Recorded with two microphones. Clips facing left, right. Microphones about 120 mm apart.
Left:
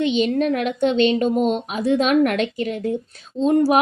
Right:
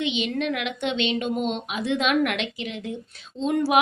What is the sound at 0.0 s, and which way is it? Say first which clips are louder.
A woman's voice: left 7 dB; 40° left (ahead or behind).